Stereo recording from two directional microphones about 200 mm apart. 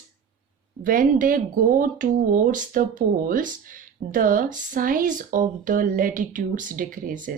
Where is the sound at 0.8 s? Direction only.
40° right (ahead or behind).